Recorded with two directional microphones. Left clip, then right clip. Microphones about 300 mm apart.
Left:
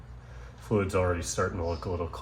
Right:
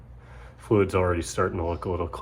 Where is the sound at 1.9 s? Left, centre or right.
Right.